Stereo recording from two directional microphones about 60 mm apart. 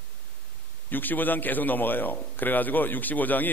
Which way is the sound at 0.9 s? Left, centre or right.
Left.